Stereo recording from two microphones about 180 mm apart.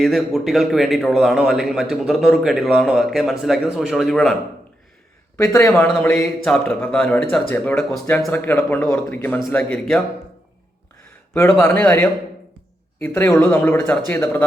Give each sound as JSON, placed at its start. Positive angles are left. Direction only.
{"t": 0.0, "sound": "a man's voice", "side_deg": 0}
{"t": 5.4, "sound": "speech", "side_deg": 15}
{"t": 11.6, "sound": "speech", "side_deg": 10}